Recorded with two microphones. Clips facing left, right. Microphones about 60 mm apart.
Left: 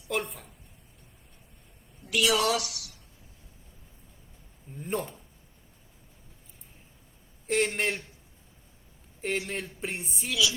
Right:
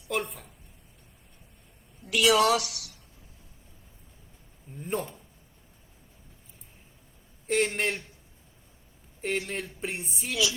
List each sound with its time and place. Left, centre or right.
0.1 s a woman's voice: centre
2.0 s a woman's voice: right
4.7 s speech: centre
7.4 s speech: centre
9.2 s speech: centre